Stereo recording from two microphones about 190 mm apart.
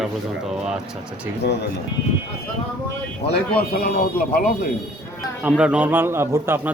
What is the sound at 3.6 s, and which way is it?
Speech, 55° left (ahead or behind).